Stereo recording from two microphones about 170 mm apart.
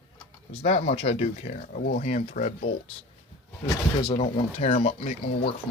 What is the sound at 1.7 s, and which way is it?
Speech, 60° left (ahead or behind).